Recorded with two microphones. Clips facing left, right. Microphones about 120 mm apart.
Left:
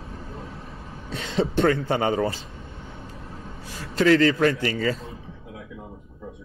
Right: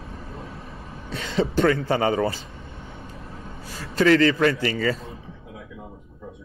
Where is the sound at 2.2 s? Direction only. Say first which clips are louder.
Right 1 dB; centre (ahead or behind).